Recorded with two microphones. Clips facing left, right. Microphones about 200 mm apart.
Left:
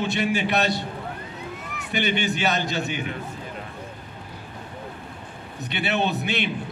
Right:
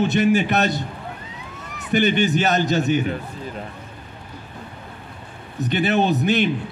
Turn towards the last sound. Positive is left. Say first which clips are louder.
# right 6 dB
turn(degrees=-40)  # may be behind; listen again after turning